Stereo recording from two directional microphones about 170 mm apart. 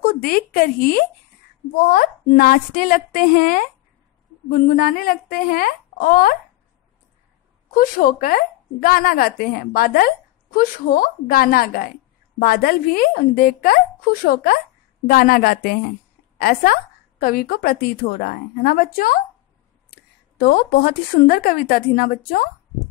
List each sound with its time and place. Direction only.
0.0 s speech: 55° left (ahead or behind)
7.7 s a woman's voice: 55° left (ahead or behind)